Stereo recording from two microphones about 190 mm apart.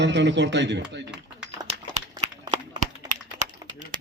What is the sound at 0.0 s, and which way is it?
Speech, 70° right (ahead or behind).